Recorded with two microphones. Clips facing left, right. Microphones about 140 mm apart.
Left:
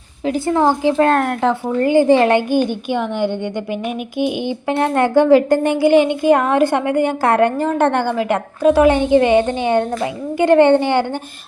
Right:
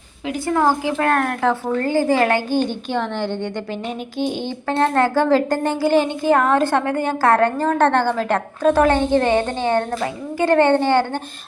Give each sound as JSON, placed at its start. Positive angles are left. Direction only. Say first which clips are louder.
{"t": 0.3, "sound": "a woman's voice", "louder": "left 3 dB", "side_deg": 25}